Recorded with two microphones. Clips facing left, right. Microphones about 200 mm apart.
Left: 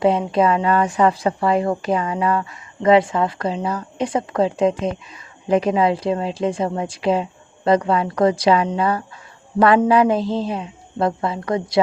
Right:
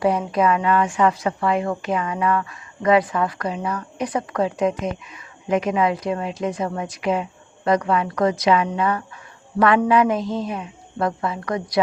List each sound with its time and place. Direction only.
0.0 s a woman's voice: 25° left (ahead or behind)